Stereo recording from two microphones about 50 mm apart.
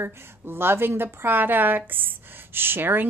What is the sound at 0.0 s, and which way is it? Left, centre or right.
A woman's voice, right.